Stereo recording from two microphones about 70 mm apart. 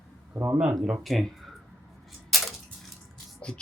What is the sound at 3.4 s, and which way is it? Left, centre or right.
Music, centre.